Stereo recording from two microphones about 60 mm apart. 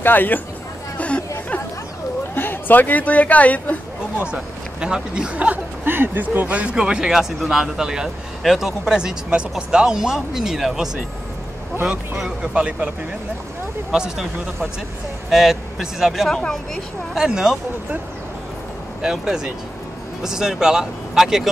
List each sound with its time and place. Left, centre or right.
0.0 s speech: left
0.9 s chatter: left
2.3 s speech: left
4.3 s speech: centre
5.9 s speech: right
6.6 s speech: centre
8.9 s speech: centre
12.5 s speech: centre
13.9 s speech: centre
15.2 s speech: centre
16.3 s speech: centre
17.1 s speech: centre
19.0 s speech: centre